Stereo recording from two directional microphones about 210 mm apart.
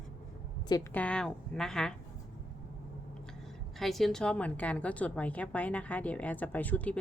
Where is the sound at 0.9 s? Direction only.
5° left (ahead or behind).